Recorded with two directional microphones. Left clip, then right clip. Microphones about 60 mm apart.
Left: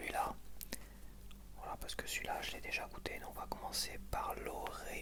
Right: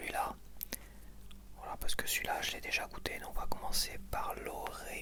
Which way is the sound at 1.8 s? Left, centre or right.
Right.